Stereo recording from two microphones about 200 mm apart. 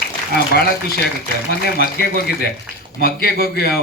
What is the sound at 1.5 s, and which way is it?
A man's voice, 50° left (ahead or behind).